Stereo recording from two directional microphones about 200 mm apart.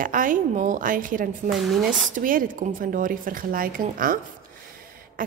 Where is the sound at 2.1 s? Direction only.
45° right (ahead or behind).